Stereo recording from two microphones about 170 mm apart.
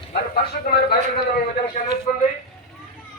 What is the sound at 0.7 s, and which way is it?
Speech, 55° left (ahead or behind).